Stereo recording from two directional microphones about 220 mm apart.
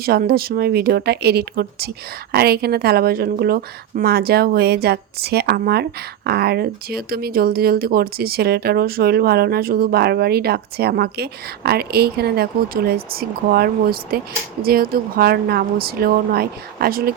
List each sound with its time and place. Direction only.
0.0 s a woman's voice: 45° right (ahead or behind)